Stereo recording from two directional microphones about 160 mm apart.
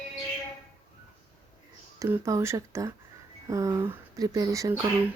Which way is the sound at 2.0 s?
15° right (ahead or behind).